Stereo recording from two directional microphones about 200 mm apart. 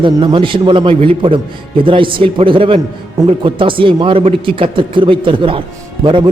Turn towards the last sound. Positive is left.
turn(degrees=-25)  # may be behind; listen again after turning